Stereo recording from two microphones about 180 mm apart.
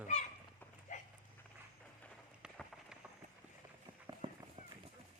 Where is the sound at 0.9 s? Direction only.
45° left (ahead or behind).